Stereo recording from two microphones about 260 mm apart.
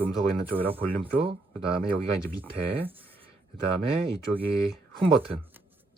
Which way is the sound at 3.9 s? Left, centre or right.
Right.